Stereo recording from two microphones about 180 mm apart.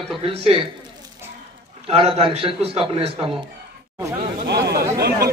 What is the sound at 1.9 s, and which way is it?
A man's voice, 30° right (ahead or behind).